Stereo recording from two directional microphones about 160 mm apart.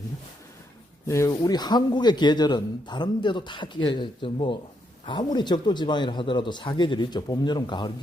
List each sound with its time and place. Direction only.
1.0 s a man's voice: 20° left (ahead or behind)